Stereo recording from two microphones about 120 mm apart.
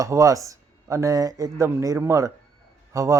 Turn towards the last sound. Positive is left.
turn(degrees=-25)  # may be behind; listen again after turning